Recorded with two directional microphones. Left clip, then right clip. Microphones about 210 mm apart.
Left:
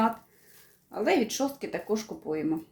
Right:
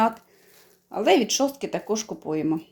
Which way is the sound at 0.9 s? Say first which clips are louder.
Right 6 dB; 35° right (ahead or behind).